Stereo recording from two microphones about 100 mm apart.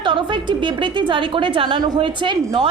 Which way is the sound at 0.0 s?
55° right (ahead or behind).